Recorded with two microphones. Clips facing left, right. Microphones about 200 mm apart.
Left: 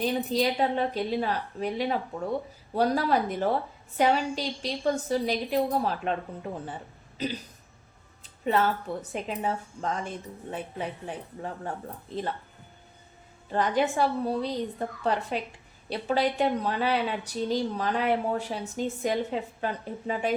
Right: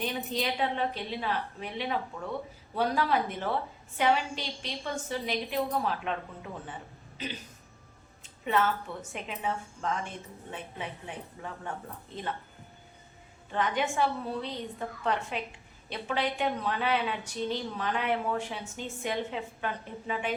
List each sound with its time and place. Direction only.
0.0 s speech: 35° left (ahead or behind)
8.2 s speech: 35° left (ahead or behind)
13.5 s speech: 35° left (ahead or behind)